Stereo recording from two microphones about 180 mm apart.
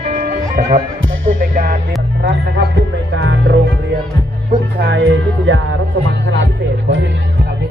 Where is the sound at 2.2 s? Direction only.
65° right (ahead or behind).